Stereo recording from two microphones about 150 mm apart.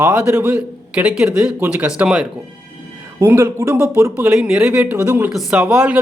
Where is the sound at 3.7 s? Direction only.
10° right (ahead or behind).